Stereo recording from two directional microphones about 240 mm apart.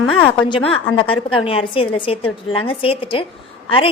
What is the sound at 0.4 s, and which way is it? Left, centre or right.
A woman's voice, left.